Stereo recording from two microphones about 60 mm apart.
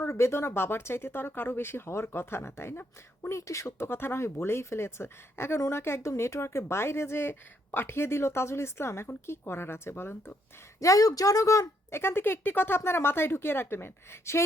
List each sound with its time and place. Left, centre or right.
0.0 s speech: left
3.2 s speech: left
3.8 s speech: left
10.8 s speech: left